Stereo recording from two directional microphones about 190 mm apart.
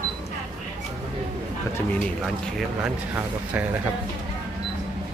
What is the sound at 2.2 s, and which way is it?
A man's voice, centre (ahead or behind).